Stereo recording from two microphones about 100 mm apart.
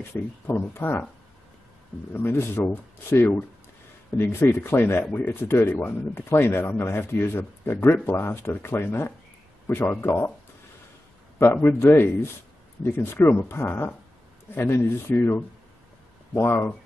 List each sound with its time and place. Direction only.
0.1 s speech: 20° left (ahead or behind)
2.1 s speech: 20° left (ahead or behind)
11.3 s speech: 25° left (ahead or behind)